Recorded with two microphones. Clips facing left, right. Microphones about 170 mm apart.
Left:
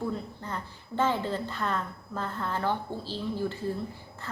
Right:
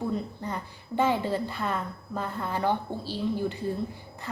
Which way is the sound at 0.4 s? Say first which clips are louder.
Right 3 dB; 10° right (ahead or behind).